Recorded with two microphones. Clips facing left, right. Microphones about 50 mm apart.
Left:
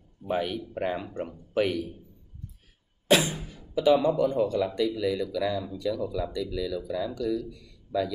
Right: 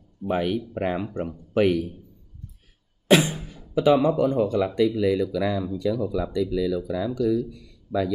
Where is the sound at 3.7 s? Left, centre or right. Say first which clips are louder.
Right 3 dB; right.